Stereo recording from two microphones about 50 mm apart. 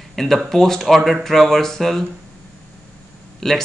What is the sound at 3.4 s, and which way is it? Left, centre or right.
Speech, centre.